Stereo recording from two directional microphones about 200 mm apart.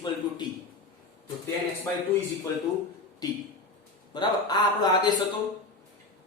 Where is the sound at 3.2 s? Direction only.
20° left (ahead or behind).